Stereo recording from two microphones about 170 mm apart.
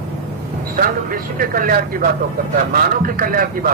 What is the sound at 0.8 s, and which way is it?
A man's voice, 55° right (ahead or behind).